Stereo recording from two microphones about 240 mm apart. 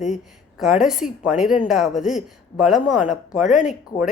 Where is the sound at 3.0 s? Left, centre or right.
Left.